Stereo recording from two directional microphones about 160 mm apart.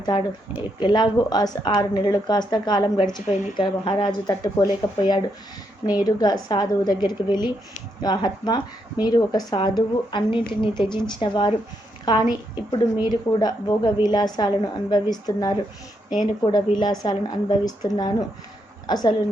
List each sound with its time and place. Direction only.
0.0 s speech: 30° left (ahead or behind)